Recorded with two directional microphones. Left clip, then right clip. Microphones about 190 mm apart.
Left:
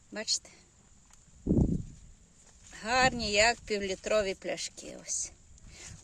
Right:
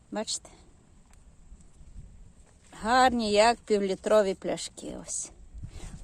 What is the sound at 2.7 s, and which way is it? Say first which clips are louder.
A woman's voice: right 5 dB; 20° right (ahead or behind).